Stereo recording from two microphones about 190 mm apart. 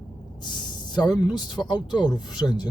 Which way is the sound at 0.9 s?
25° left (ahead or behind).